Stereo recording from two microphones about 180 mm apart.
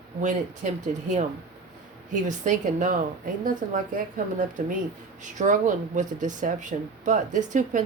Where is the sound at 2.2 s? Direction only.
45° right (ahead or behind).